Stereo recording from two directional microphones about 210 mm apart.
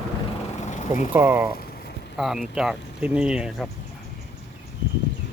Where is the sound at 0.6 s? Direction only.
35° left (ahead or behind).